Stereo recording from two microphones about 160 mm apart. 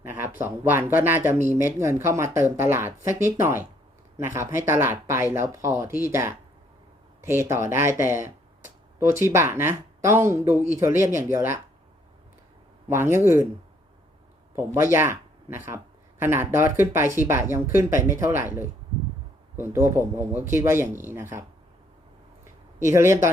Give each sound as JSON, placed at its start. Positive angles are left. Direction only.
{"t": 0.0, "sound": "speech", "side_deg": -15}
{"t": 9.3, "sound": "speech", "side_deg": -15}
{"t": 12.9, "sound": "speech", "side_deg": -15}
{"t": 14.5, "sound": "speech", "side_deg": -15}
{"t": 22.9, "sound": "speech", "side_deg": -15}